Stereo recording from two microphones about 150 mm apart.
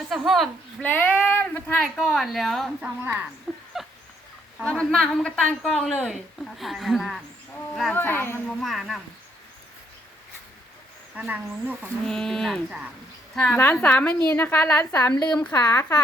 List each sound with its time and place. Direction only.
0.1 s a woman's voice: centre (ahead or behind)
0.9 s speech: 10° left (ahead or behind)
1.8 s a woman's voice: centre (ahead or behind)
3.0 s speech: 15° right (ahead or behind)
3.5 s a sound: centre (ahead or behind)
4.6 s a woman's voice: 5° left (ahead or behind)
7.9 s a woman's voice: 15° left (ahead or behind)
8.4 s a woman's voice: centre (ahead or behind)
11.1 s speech: 10° right (ahead or behind)
12.0 s a woman's voice: 5° left (ahead or behind)
15.5 s speech: 20° left (ahead or behind)